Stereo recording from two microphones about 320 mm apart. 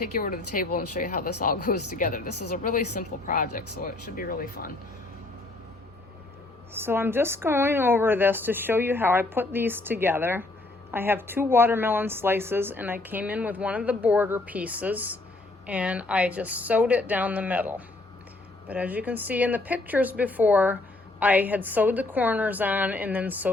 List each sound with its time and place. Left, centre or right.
0.2 s a woman's voice: left
6.7 s a woman's voice: centre